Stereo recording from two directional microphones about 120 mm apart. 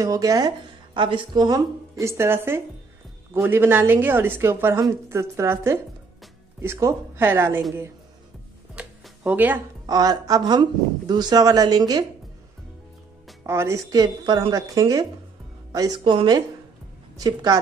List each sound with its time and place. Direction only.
0.0 s a woman's voice: 30° right (ahead or behind)
0.9 s a woman's voice: 45° right (ahead or behind); by 7.6 s 20° right (ahead or behind)
8.8 s music: 10° right (ahead or behind)
9.2 s speech: 15° right (ahead or behind)
9.8 s speech: 30° right (ahead or behind)
13.5 s a woman's voice: 20° right (ahead or behind)
13.8 s a woman's voice: 35° right (ahead or behind)
16.0 s speech: 40° right (ahead or behind)